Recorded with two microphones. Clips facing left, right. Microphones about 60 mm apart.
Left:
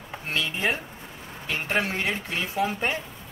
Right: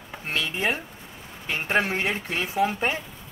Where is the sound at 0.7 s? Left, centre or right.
Centre.